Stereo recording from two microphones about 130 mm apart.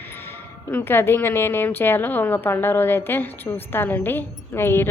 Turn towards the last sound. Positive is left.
turn(degrees=20)  # may be behind; listen again after turning